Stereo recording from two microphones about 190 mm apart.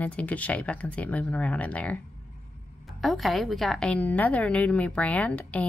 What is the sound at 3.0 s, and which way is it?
Speech, centre (ahead or behind).